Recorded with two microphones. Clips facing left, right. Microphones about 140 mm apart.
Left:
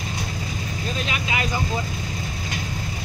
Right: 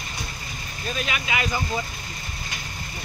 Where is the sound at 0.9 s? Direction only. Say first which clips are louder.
Right 1 dB; 30° left (ahead or behind).